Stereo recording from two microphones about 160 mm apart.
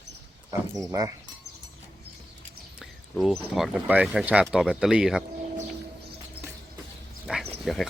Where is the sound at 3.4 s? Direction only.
Centre (ahead or behind).